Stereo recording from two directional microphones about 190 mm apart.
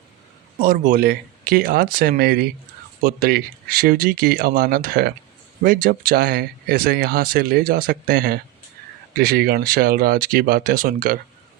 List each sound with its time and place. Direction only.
0.6 s speech: 50° right (ahead or behind)